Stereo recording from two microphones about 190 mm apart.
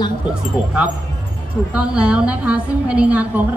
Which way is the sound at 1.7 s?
5° right (ahead or behind).